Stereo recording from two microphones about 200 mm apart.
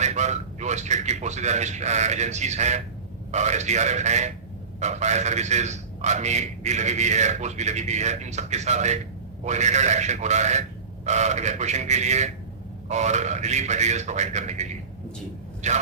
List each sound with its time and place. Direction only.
0.0 s a man's voice: 35° right (ahead or behind)